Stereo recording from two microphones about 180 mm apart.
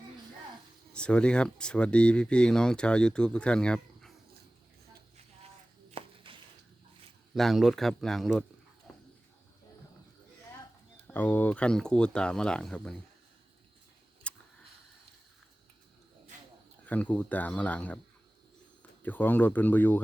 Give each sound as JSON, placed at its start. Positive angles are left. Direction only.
{"t": 0.9, "sound": "speech", "side_deg": 5}
{"t": 5.9, "sound": "chopping", "side_deg": -30}
{"t": 7.3, "sound": "speech", "side_deg": 0}
{"t": 11.0, "sound": "speech", "side_deg": 10}
{"t": 14.3, "sound": "a sound", "side_deg": 5}
{"t": 16.8, "sound": "speech", "side_deg": 10}